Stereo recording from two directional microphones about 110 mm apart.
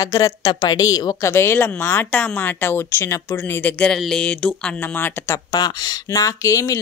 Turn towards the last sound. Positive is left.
turn(degrees=30)  # may be behind; listen again after turning